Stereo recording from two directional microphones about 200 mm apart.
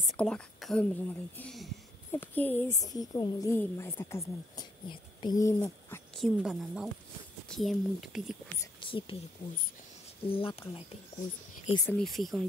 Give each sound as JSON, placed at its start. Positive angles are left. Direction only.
{"t": 0.0, "sound": "a woman's voice", "side_deg": 0}
{"t": 6.1, "sound": "speech", "side_deg": 0}
{"t": 8.5, "sound": "speech", "side_deg": 25}
{"t": 10.2, "sound": "speech", "side_deg": 25}
{"t": 11.7, "sound": "a woman's voice", "side_deg": 15}
{"t": 12.0, "sound": "speech", "side_deg": 0}